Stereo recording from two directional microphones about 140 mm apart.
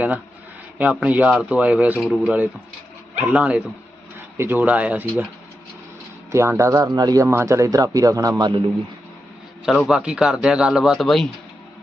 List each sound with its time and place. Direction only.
0.8 s speech: 10° right (ahead or behind)
6.3 s speech: 20° right (ahead or behind)
9.6 s a man's voice: 5° right (ahead or behind)